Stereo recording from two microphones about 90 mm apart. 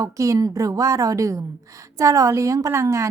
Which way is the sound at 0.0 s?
40° right (ahead or behind).